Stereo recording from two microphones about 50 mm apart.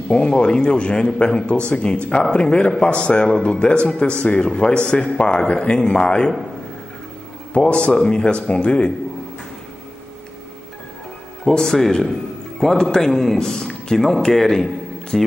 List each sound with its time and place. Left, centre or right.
0.1 s a man's voice: centre
7.5 s a man's voice: left
11.5 s a man's voice: centre